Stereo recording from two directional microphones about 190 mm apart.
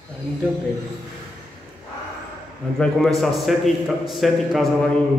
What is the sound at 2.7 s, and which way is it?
A man's voice, centre (ahead or behind).